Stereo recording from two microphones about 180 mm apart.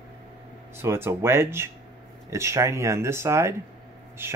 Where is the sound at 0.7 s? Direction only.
15° right (ahead or behind).